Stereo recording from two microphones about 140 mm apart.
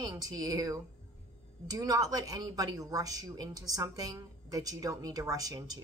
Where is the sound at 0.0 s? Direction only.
25° right (ahead or behind).